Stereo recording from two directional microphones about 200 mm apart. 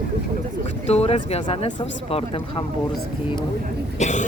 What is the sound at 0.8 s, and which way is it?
Speech, 30° left (ahead or behind).